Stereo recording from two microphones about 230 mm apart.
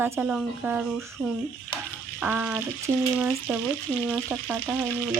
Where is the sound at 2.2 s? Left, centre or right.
Centre.